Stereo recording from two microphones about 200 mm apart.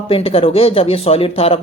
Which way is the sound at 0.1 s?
30° left (ahead or behind).